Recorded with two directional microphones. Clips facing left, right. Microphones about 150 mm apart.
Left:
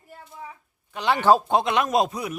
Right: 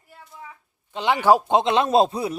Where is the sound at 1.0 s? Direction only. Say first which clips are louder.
Right 1 dB; 15° right (ahead or behind).